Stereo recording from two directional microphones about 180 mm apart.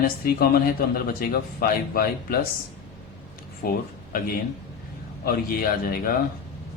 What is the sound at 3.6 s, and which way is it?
A man's voice, 55° left (ahead or behind).